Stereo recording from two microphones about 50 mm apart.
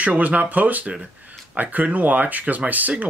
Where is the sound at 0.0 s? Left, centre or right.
Right.